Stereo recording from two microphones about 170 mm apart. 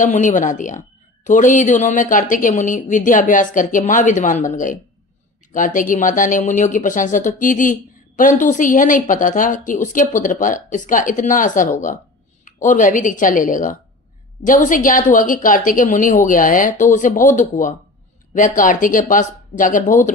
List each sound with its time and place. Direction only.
0.0 s speech: 50° left (ahead or behind)